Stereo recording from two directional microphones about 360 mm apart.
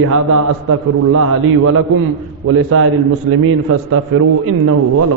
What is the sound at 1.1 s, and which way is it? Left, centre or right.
A man's voice, right.